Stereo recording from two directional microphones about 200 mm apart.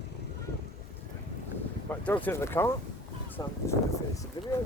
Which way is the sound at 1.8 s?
10° left (ahead or behind).